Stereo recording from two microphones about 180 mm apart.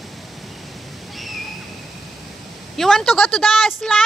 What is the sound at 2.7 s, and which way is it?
A woman's voice, centre (ahead or behind).